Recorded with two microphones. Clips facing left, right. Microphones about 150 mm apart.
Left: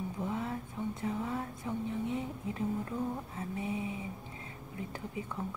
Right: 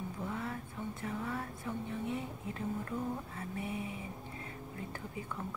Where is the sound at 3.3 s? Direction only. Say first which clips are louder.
Left 3 dB; 20° left (ahead or behind).